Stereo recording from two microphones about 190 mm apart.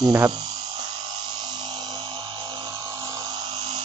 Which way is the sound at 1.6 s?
20° right (ahead or behind).